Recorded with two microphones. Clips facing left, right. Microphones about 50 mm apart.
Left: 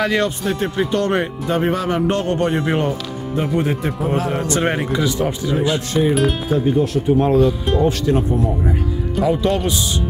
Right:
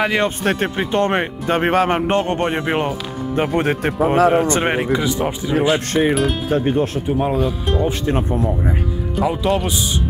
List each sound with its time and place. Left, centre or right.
0.0 s speech: centre
0.4 s speech: right
0.7 s speech: right
1.5 s speech: right
3.3 s speech: right
4.5 s speech: right
6.5 s speech: right
7.1 s speech: centre
8.0 s speech: right
9.2 s speech: centre